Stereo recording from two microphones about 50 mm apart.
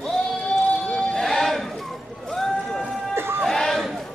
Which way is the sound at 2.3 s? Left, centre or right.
Centre.